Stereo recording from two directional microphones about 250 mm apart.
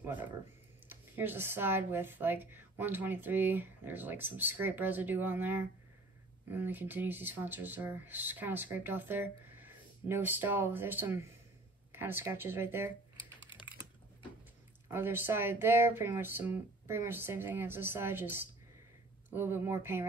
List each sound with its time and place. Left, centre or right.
0.0 s speech: centre
13.4 s typing: centre
14.9 s speech: centre